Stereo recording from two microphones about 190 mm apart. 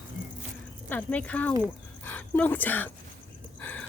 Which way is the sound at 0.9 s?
10° left (ahead or behind).